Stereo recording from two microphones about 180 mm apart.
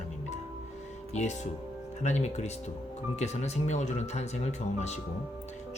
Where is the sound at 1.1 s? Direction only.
40° left (ahead or behind).